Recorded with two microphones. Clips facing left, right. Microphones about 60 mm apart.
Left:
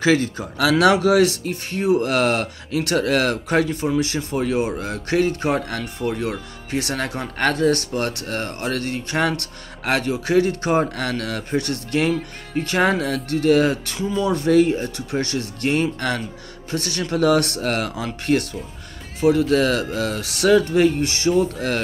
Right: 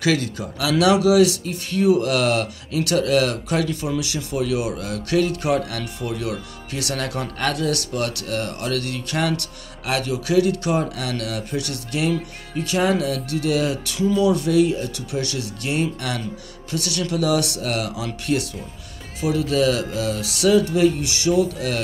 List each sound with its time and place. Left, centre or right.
0.0 s speech: left